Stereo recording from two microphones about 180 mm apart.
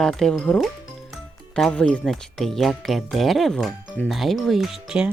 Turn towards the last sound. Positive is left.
turn(degrees=-5)  # may be behind; listen again after turning